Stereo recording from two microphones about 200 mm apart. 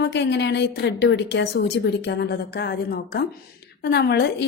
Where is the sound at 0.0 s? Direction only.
60° left (ahead or behind).